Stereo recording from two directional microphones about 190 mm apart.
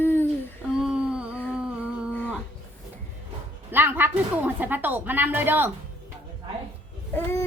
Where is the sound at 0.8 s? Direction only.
5° right (ahead or behind).